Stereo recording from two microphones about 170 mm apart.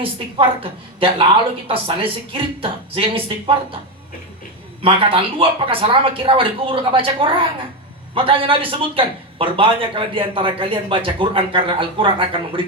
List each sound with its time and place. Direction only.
0.0 s a man's voice: 30° right (ahead or behind)
4.8 s a man's voice: 30° right (ahead or behind)